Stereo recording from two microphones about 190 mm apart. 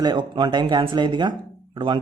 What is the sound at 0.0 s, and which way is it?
Speech, 25° right (ahead or behind).